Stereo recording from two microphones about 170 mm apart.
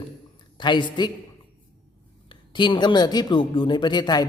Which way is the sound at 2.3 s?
30° left (ahead or behind).